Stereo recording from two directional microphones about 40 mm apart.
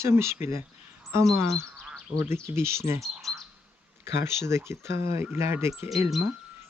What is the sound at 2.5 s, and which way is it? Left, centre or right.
Speech, right.